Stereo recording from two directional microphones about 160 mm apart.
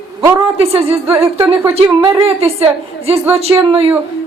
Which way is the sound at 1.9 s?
25° right (ahead or behind).